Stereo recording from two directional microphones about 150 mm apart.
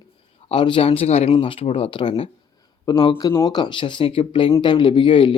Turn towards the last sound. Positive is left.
turn(degrees=30)  # may be behind; listen again after turning